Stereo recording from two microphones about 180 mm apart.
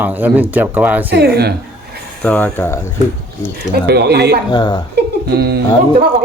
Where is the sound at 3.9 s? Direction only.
65° right (ahead or behind).